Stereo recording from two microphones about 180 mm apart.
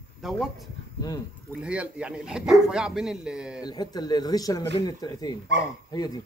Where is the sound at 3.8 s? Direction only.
25° left (ahead or behind).